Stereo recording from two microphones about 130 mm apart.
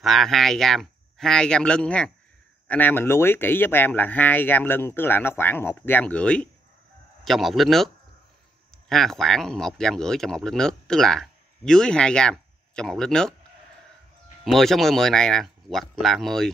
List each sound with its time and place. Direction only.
0.0 s speech: centre (ahead or behind)
14.4 s speech: centre (ahead or behind)